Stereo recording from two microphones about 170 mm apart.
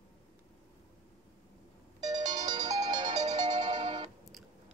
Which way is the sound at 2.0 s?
25° right (ahead or behind).